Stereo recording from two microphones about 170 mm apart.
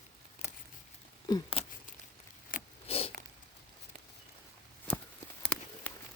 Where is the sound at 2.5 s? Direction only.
55° left (ahead or behind).